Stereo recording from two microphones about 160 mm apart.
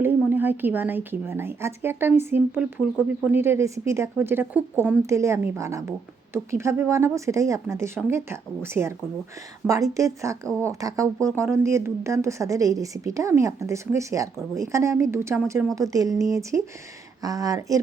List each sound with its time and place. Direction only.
0.0 s a woman's voice: 15° right (ahead or behind)